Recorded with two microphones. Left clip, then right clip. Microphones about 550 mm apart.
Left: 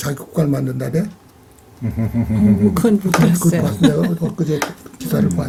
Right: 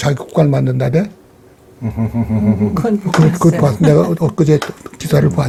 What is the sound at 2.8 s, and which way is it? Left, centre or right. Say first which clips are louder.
Speech: right 2 dB; left.